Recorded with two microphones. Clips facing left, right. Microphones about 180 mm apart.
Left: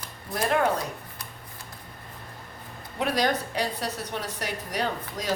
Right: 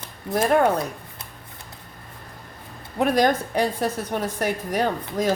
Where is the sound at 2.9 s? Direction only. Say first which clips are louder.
Right 6 dB; 50° right (ahead or behind).